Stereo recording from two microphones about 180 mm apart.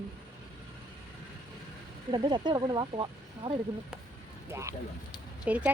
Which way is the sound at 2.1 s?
25° right (ahead or behind).